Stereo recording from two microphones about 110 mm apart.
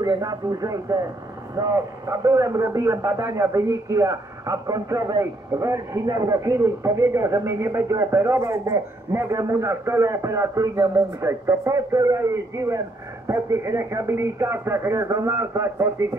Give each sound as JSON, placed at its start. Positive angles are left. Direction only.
{"t": 0.0, "sound": "a man's voice", "side_deg": -35}